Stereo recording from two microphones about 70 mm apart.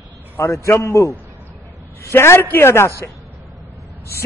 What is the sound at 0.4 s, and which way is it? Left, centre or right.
A man's voice, left.